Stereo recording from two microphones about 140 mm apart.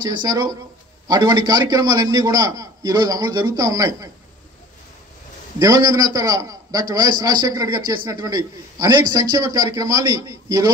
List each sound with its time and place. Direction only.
0.0 s a man's voice: 30° right (ahead or behind)
5.6 s a man's voice: 25° right (ahead or behind)